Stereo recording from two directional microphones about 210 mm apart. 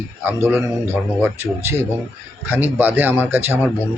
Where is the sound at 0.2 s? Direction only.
10° right (ahead or behind).